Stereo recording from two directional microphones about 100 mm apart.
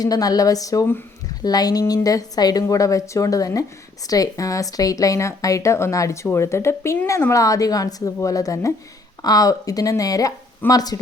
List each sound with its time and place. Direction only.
0.0 s a woman's voice: 40° left (ahead or behind)